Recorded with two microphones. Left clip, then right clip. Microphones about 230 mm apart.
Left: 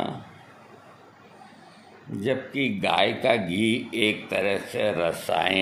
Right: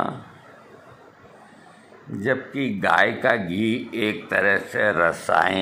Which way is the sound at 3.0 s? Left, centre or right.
Right.